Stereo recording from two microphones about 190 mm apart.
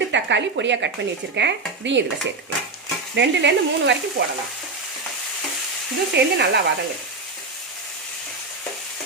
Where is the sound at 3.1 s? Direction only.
70° right (ahead or behind).